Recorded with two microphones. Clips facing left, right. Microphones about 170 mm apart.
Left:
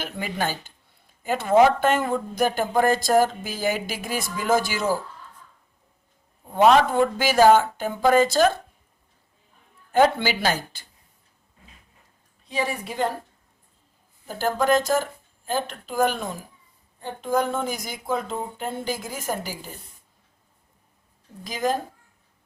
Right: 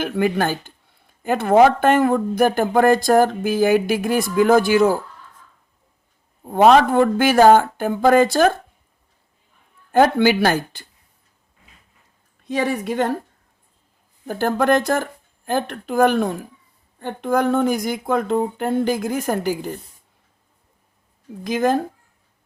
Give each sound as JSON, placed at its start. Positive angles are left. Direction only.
{"t": 0.0, "sound": "speech", "side_deg": -55}
{"t": 6.5, "sound": "speech", "side_deg": -55}
{"t": 10.0, "sound": "speech", "side_deg": -55}
{"t": 12.6, "sound": "speech", "side_deg": -65}
{"t": 14.3, "sound": "speech", "side_deg": -55}
{"t": 21.4, "sound": "speech", "side_deg": -55}